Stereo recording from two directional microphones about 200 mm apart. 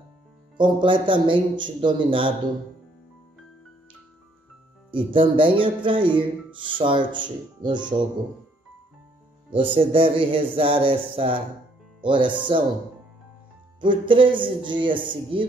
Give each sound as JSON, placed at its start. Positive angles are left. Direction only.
{"t": 0.6, "sound": "speech", "side_deg": -25}
{"t": 4.9, "sound": "speech", "side_deg": -25}
{"t": 9.5, "sound": "speech", "side_deg": -25}
{"t": 13.7, "sound": "speech", "side_deg": -25}